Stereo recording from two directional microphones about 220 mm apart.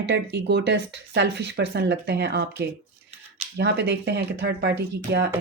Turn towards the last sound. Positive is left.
turn(degrees=-50)  # may be behind; listen again after turning